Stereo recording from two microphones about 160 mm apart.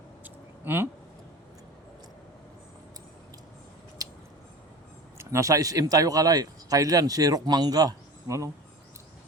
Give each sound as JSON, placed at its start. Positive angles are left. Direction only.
{"t": 0.6, "sound": "speech", "side_deg": -15}
{"t": 4.0, "sound": "a sound", "side_deg": -20}
{"t": 5.1, "sound": "speech", "side_deg": -20}